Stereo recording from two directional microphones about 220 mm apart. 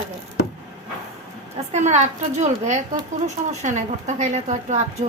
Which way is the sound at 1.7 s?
30° right (ahead or behind).